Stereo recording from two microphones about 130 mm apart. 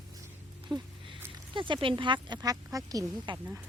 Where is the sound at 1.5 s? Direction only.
40° right (ahead or behind).